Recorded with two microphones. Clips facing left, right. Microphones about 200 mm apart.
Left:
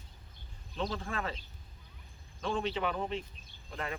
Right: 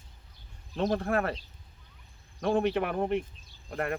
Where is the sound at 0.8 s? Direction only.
60° right (ahead or behind).